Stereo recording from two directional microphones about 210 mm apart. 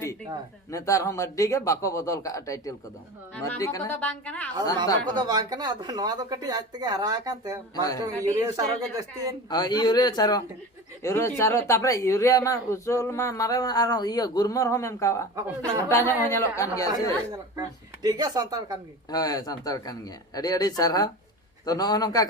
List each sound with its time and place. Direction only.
0.7 s speech: 15° left (ahead or behind)
5.1 s speech: 20° right (ahead or behind)
7.8 s speech: 15° left (ahead or behind)
8.0 s speech: 15° right (ahead or behind)
9.5 s a man's voice: 20° left (ahead or behind)
17.3 s speech: 20° right (ahead or behind)
19.1 s speech: 20° left (ahead or behind)